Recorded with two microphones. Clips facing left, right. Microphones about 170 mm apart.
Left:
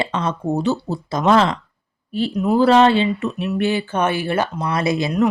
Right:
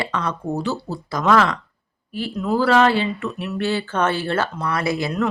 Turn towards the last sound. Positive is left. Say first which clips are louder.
# left 4 dB
turn(degrees=15)  # may be behind; listen again after turning